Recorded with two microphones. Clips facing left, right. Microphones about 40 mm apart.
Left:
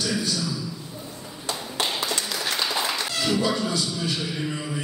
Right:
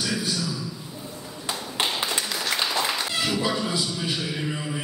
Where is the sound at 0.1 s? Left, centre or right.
Centre.